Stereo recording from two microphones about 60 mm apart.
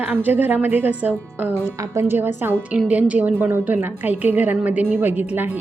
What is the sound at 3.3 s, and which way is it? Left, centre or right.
A woman's voice, right.